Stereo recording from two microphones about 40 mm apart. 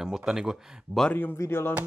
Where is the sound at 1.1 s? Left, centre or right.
Left.